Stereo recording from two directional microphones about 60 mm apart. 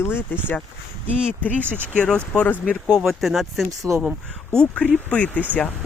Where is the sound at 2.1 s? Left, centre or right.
Left.